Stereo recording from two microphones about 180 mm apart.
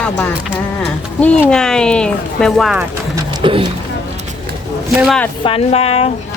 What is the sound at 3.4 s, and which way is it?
Speech, 30° right (ahead or behind).